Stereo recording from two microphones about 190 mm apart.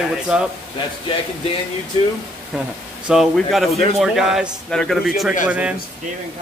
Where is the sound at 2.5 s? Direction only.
5° right (ahead or behind).